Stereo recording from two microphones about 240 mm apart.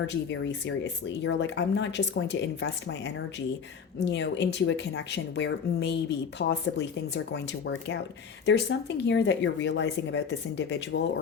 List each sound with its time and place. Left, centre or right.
0.1 s speech: left
9.0 s speech: left